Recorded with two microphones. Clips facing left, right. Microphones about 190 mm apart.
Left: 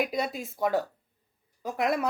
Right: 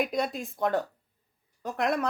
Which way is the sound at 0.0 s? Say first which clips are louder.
Right 1 dB; 5° left (ahead or behind).